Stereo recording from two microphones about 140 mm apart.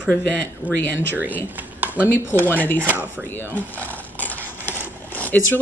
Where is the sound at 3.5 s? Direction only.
10° left (ahead or behind).